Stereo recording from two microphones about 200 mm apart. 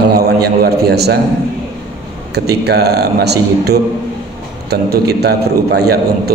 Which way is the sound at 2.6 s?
55° right (ahead or behind).